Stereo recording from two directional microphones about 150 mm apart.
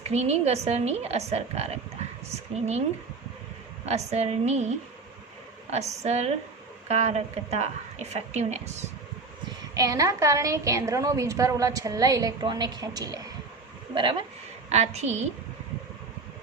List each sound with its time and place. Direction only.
0.0 s a woman's voice: 45° right (ahead or behind)
3.8 s a woman's voice: 45° right (ahead or behind)
5.7 s a woman's voice: 50° right (ahead or behind)
9.7 s a woman's voice: 20° right (ahead or behind)
14.7 s a woman's voice: 45° right (ahead or behind)